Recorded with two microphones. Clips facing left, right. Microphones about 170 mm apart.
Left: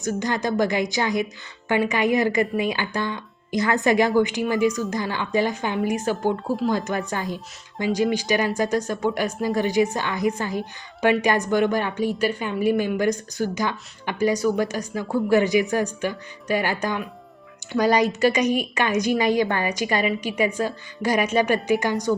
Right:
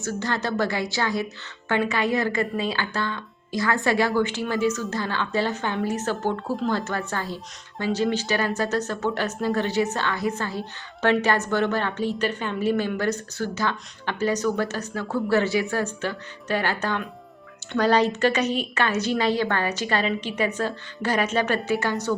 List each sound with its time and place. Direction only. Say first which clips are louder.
0.0 s speech: left 3 dB; 15° left (ahead or behind)